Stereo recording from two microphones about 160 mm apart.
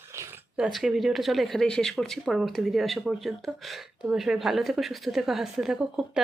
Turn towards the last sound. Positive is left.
turn(degrees=-5)  # may be behind; listen again after turning